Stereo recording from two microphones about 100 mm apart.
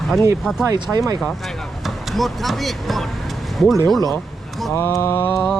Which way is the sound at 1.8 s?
Centre (ahead or behind).